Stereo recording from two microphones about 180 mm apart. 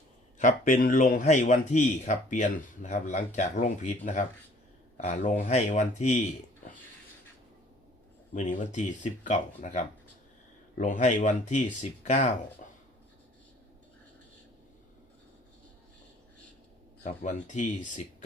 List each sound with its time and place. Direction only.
0.3 s a man's voice: 45° left (ahead or behind)
8.3 s speech: 45° left (ahead or behind)
17.0 s a man's voice: 45° left (ahead or behind)